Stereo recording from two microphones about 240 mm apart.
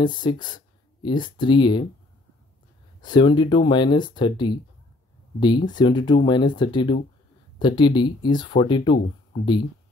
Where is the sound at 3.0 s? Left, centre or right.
Centre.